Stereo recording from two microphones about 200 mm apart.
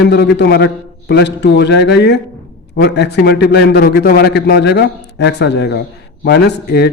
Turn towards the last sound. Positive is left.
turn(degrees=55)  # may be behind; listen again after turning